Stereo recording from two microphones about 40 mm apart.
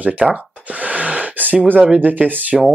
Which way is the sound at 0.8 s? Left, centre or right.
Right.